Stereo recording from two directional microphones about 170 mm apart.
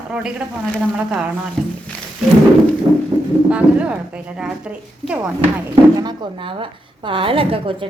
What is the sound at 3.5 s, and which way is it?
A woman's voice, 5° right (ahead or behind).